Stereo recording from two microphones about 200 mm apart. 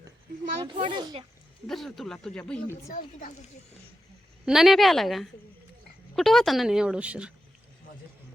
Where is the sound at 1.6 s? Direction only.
Centre (ahead or behind).